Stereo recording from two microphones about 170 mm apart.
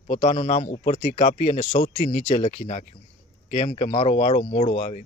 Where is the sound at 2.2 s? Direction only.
35° left (ahead or behind).